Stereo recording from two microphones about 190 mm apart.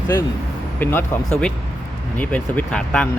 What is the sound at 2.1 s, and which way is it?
Speech, 10° left (ahead or behind).